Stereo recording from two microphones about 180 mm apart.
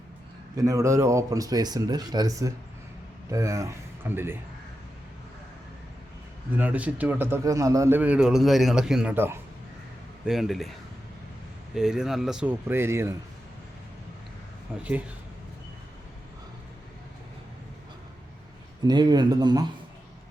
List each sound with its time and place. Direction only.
0.5 s speech: 20° right (ahead or behind)
6.6 s a man's voice: 10° right (ahead or behind)
10.2 s speech: centre (ahead or behind)
14.7 s a man's voice: 10° right (ahead or behind)
18.9 s speech: 25° right (ahead or behind)